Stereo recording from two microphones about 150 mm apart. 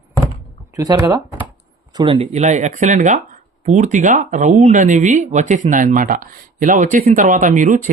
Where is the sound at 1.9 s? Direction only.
35° right (ahead or behind).